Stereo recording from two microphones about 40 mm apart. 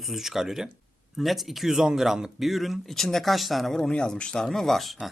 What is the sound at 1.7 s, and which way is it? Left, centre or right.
Speech, centre.